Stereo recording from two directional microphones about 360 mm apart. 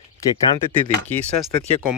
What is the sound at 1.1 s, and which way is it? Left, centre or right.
Speech, centre.